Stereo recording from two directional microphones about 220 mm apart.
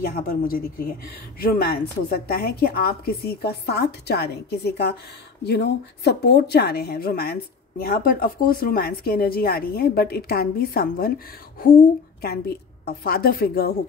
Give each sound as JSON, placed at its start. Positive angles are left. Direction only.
{"t": 0.0, "sound": "speech", "side_deg": 45}